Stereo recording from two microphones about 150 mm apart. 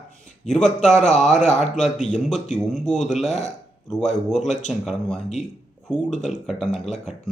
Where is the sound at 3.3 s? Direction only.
50° left (ahead or behind).